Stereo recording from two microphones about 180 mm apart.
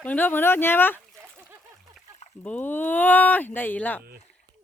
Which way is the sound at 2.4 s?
10° left (ahead or behind).